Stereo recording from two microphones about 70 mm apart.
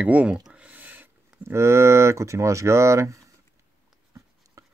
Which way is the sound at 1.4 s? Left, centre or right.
Right.